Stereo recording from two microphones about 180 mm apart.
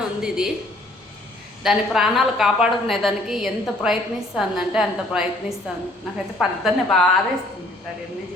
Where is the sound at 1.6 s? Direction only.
5° right (ahead or behind).